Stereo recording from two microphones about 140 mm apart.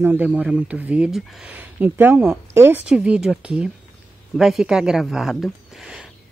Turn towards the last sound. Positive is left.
turn(degrees=0)  # may be behind; listen again after turning